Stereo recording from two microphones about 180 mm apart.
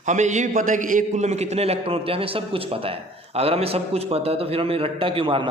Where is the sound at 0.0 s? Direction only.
40° right (ahead or behind).